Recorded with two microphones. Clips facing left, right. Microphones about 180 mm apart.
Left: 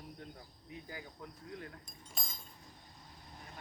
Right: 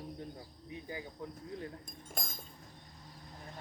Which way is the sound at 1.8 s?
50° right (ahead or behind).